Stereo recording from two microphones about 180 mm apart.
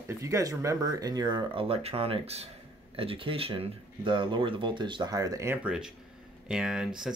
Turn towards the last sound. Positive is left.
turn(degrees=-5)  # may be behind; listen again after turning